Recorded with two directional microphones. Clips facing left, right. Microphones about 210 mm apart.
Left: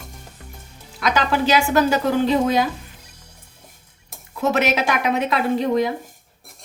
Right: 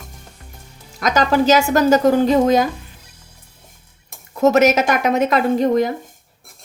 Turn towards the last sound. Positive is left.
turn(degrees=-45)  # may be behind; listen again after turning